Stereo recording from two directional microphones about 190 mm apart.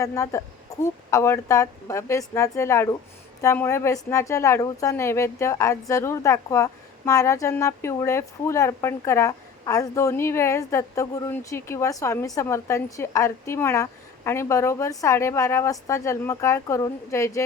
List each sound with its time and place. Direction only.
0.0 s a woman's voice: 15° left (ahead or behind)